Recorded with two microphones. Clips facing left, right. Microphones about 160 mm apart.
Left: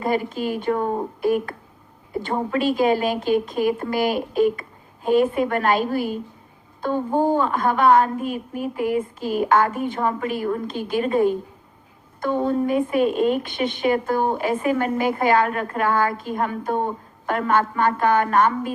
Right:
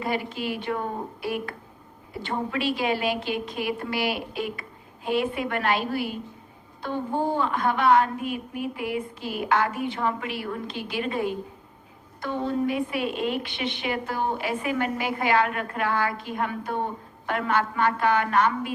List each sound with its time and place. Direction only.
0.0 s a woman's voice: 45° left (ahead or behind)